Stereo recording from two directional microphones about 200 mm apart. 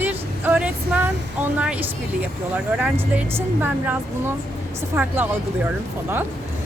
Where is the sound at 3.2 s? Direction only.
10° right (ahead or behind).